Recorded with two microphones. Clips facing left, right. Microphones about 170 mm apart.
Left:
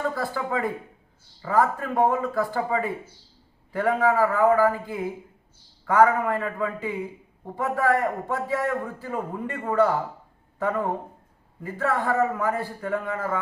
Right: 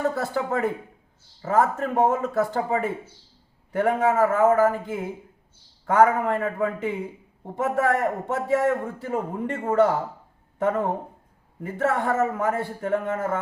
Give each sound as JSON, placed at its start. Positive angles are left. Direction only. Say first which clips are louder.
{"t": 0.1, "sound": "a man's voice", "louder": "right 2 dB", "side_deg": -25}